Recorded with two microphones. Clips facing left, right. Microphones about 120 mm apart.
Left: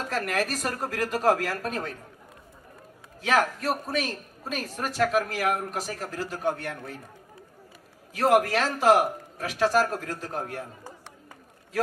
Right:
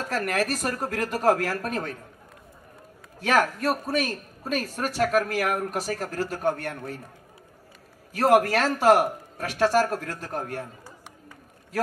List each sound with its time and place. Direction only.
0.1 s a woman's voice: 55° right (ahead or behind)
3.2 s a woman's voice: 50° right (ahead or behind)
8.1 s a man's voice: 55° right (ahead or behind)